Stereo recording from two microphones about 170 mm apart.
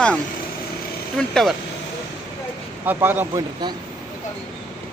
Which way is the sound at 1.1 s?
Centre (ahead or behind).